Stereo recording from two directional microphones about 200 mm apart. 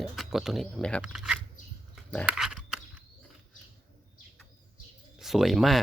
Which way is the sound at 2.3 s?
5° right (ahead or behind).